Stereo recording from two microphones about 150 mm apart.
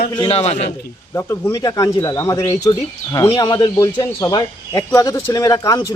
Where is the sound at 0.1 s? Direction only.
35° left (ahead or behind).